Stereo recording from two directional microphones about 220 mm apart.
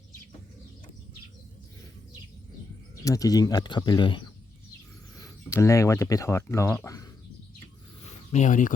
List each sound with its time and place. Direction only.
2.9 s speech: 15° left (ahead or behind)
8.3 s speech: 35° left (ahead or behind)